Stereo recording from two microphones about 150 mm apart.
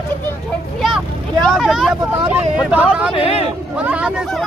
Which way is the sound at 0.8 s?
5° right (ahead or behind).